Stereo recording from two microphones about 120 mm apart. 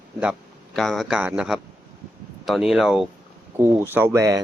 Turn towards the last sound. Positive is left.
turn(degrees=-25)  # may be behind; listen again after turning